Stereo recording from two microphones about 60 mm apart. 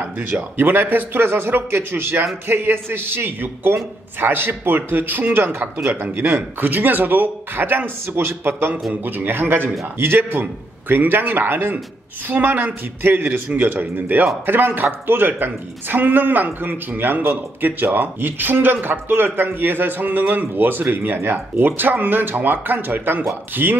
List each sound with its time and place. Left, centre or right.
0.6 s a woman's voice: right